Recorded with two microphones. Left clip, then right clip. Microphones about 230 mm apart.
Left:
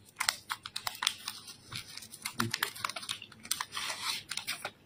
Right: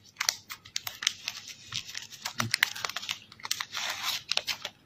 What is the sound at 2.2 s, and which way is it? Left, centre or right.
Typing, centre.